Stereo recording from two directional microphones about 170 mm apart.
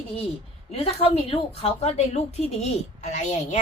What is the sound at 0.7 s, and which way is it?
A woman's voice, 35° left (ahead or behind).